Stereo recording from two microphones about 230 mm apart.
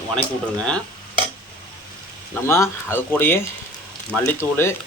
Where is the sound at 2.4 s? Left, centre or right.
Centre.